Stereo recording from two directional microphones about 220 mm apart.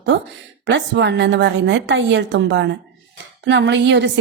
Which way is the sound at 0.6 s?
55° right (ahead or behind).